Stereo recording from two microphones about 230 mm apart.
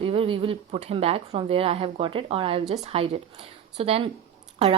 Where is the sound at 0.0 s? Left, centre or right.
Right.